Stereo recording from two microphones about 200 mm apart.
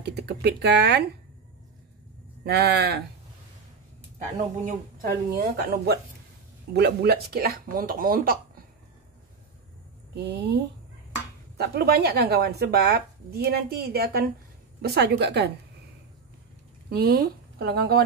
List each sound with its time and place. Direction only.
0.0 s speech: 55° right (ahead or behind)
2.4 s speech: 50° right (ahead or behind)
4.6 s speech: 45° right (ahead or behind)
10.1 s speech: 60° right (ahead or behind)
16.9 s speech: 50° right (ahead or behind)